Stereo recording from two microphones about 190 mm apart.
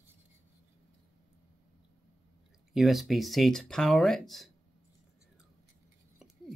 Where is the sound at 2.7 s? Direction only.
Centre (ahead or behind).